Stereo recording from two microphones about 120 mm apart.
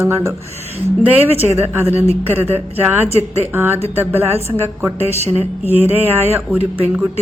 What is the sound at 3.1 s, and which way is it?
Speech, 65° right (ahead or behind).